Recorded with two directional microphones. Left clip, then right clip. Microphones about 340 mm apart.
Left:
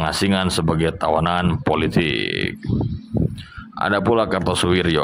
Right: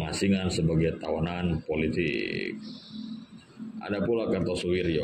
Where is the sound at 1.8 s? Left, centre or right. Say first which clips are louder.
Left 8 dB; left.